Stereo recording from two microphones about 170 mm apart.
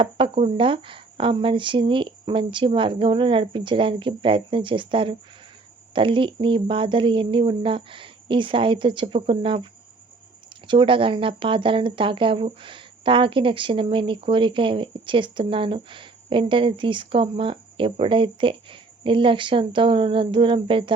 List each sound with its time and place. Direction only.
0.0 s speech: 30° right (ahead or behind)
10.7 s speech: 30° right (ahead or behind)